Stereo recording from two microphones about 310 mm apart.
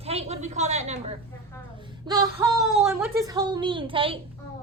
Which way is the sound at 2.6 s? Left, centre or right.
Centre.